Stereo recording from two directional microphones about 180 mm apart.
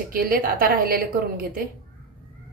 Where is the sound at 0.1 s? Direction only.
55° right (ahead or behind).